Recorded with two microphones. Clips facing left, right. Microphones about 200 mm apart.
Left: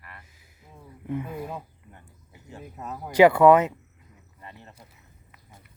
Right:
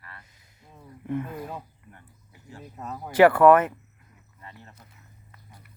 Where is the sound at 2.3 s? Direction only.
20° left (ahead or behind).